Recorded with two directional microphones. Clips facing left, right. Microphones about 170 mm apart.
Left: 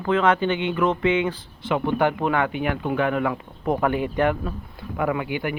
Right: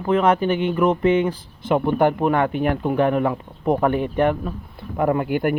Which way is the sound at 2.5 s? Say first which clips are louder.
Right 4 dB; 40° right (ahead or behind).